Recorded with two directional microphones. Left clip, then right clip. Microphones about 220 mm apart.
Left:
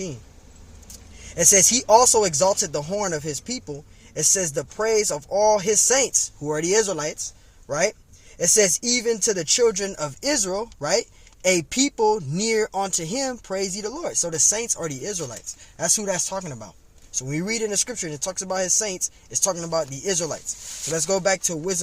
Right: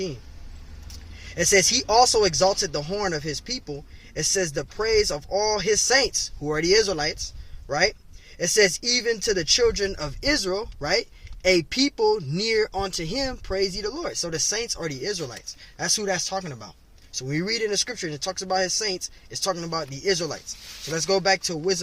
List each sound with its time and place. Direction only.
1.3 s speech: 25° left (ahead or behind)